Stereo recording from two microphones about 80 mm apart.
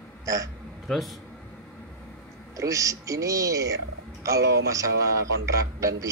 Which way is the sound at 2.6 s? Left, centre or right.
Right.